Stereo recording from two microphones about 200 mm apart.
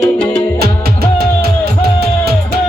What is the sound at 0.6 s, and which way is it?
Music, 50° right (ahead or behind).